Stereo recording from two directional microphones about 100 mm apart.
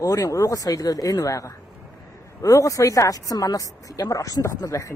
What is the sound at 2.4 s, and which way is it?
Speech, 35° left (ahead or behind).